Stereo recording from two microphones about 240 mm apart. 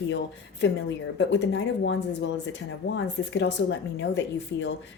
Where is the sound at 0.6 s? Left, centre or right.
Left.